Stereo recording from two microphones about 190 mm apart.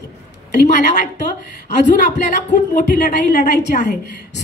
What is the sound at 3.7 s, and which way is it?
Speech, 40° left (ahead or behind).